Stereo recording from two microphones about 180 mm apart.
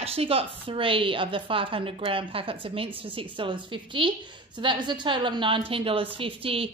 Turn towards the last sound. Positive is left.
turn(degrees=-30)  # may be behind; listen again after turning